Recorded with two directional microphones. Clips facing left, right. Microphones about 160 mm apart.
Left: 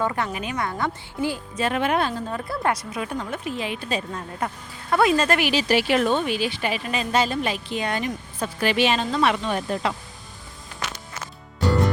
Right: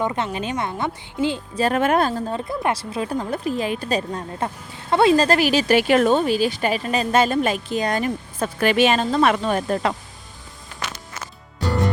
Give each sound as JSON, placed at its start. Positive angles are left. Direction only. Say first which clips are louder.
{"t": 0.0, "sound": "speech", "louder": "right 2 dB", "side_deg": -20}
{"t": 1.5, "sound": "a woman's voice", "louder": "right 4 dB", "side_deg": -40}
{"t": 2.3, "sound": "a woman's voice", "louder": "right 2 dB", "side_deg": -25}
{"t": 4.4, "sound": "speech", "louder": "right 2 dB", "side_deg": -25}